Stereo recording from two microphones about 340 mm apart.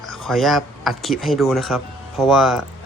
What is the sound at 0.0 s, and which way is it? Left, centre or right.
Speech, centre.